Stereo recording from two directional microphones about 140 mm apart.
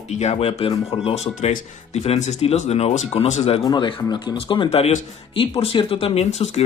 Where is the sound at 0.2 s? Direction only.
50° left (ahead or behind).